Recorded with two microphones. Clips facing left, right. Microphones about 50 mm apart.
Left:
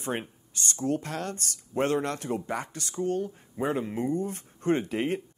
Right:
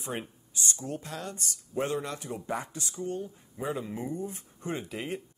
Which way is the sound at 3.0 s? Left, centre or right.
Left.